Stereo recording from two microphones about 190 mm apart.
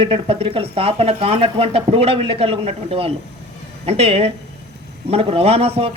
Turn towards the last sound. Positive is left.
turn(degrees=-30)  # may be behind; listen again after turning